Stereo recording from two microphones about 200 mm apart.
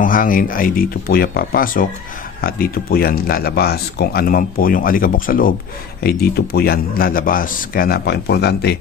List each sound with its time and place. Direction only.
0.0 s speech: 45° left (ahead or behind)